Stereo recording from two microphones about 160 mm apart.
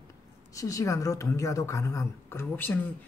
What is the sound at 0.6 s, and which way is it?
A woman's voice, 20° left (ahead or behind).